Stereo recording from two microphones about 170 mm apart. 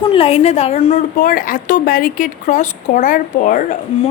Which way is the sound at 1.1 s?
55° left (ahead or behind).